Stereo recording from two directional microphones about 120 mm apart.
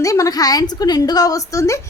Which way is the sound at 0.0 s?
30° left (ahead or behind).